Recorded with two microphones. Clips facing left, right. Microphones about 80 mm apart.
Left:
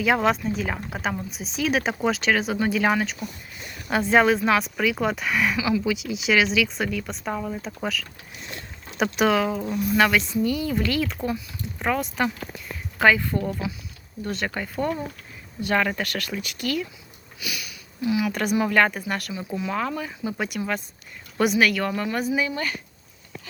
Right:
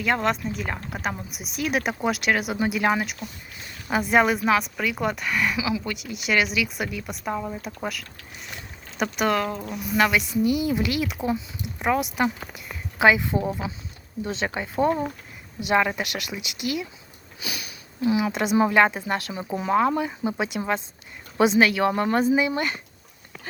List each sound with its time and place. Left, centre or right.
0.0 s speech: centre
17.4 s speech: right